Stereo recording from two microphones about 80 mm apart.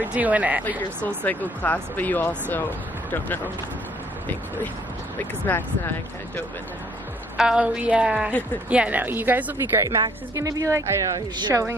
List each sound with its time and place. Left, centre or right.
0.0 s speech: centre
0.7 s speech: left
5.5 s speech: left
7.3 s a woman's voice: centre
9.8 s a woman's voice: right